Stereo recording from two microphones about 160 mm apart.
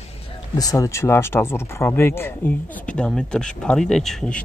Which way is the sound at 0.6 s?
20° left (ahead or behind).